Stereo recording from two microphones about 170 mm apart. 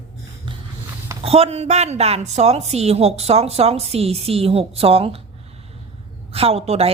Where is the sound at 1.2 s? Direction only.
35° right (ahead or behind).